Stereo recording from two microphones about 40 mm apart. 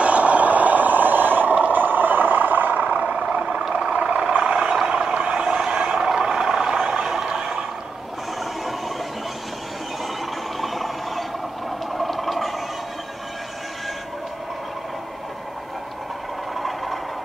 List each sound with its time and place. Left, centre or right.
0.0 s vehicle: right
3.2 s vehicle: centre
3.8 s vehicle: right
10.6 s a sound: centre
16.5 s vehicle: centre